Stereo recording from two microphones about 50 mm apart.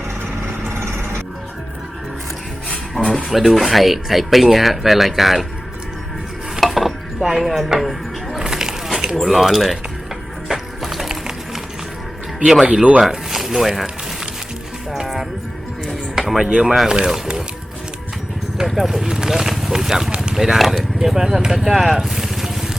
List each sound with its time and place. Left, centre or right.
0.7 s a sound: right
3.0 s a sound: centre
3.2 s speech: centre
6.6 s chopping: centre
8.4 s a sound: centre
9.2 s speech: centre
10.5 s music: centre
13.0 s speech: centre
14.9 s music: centre
16.2 s speech: centre
18.5 s speech: centre
20.1 s a sound: right
20.3 s speech: centre